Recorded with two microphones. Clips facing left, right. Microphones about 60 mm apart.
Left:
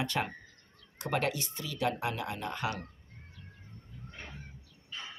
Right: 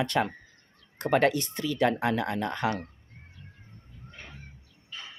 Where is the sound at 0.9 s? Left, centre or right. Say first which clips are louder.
Right 8 dB; right.